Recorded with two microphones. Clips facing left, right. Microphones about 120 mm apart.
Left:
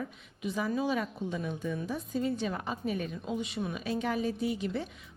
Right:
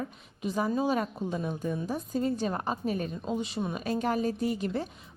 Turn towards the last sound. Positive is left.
turn(degrees=-45)  # may be behind; listen again after turning